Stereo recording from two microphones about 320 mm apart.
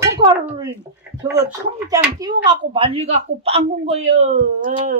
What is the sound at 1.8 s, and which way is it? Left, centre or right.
A man's voice, centre.